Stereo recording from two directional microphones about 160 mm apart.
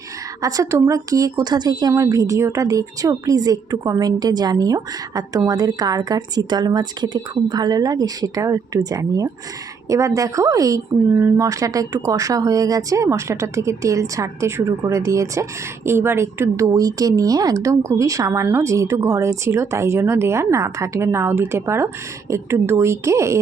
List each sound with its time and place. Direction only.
0.4 s a woman's voice: 20° right (ahead or behind)